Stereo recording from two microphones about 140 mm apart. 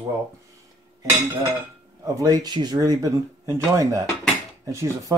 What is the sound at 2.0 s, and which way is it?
Speech, 25° right (ahead or behind).